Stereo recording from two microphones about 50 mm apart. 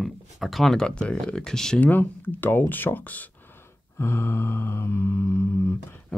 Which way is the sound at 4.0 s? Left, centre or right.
Left.